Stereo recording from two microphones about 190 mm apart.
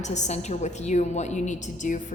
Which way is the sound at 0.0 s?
40° left (ahead or behind).